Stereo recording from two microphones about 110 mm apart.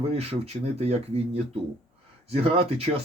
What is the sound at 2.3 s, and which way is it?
Speech, 70° right (ahead or behind).